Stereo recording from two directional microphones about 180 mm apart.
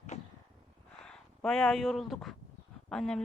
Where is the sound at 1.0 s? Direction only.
5° left (ahead or behind).